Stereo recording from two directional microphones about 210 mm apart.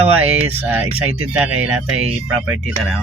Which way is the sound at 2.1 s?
10° right (ahead or behind).